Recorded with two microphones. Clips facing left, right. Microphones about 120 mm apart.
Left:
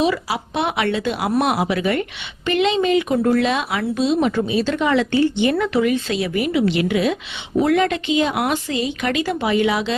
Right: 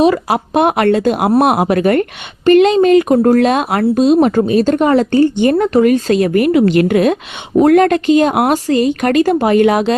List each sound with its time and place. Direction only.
0.0 s a woman's voice: 45° right (ahead or behind)